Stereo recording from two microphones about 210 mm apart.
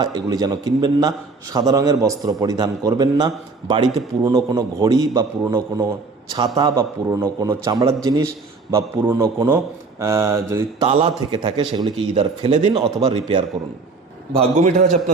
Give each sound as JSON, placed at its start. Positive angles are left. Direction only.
{"t": 0.0, "sound": "a man's voice", "side_deg": -20}
{"t": 10.8, "sound": "a man's voice", "side_deg": -25}
{"t": 12.7, "sound": "a man's voice", "side_deg": -20}
{"t": 14.3, "sound": "a man's voice", "side_deg": -35}